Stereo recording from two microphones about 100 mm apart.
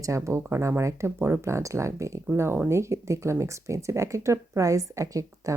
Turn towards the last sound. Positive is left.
turn(degrees=-35)  # may be behind; listen again after turning